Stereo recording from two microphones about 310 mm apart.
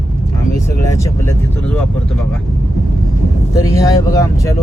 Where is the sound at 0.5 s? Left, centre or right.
Centre.